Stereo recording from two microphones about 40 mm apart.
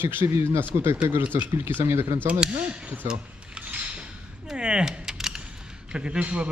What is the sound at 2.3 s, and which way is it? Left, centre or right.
Speech, right.